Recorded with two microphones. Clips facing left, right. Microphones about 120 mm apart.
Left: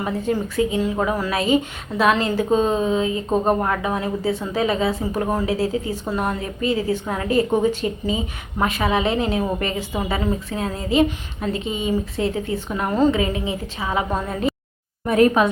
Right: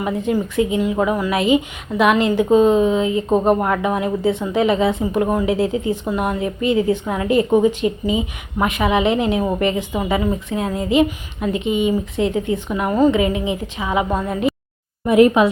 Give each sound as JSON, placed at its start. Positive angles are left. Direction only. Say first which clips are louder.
{"t": 0.2, "sound": "a woman's voice", "louder": "right 2 dB", "side_deg": -20}